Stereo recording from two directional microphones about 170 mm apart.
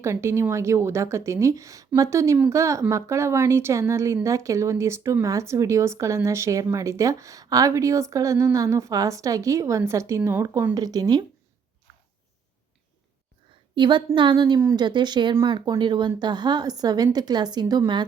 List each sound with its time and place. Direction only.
0.0 s speech: 15° right (ahead or behind)
13.7 s a woman's voice: 30° right (ahead or behind)